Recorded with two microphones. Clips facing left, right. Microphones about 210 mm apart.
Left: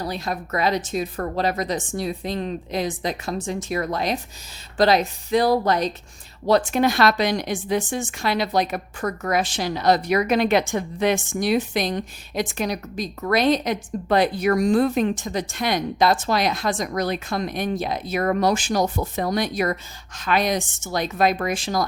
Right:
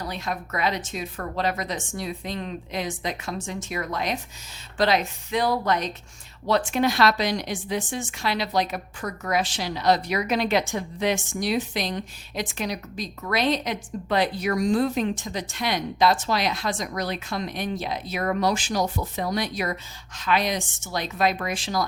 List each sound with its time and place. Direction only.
0.0 s a woman's voice: 35° left (ahead or behind)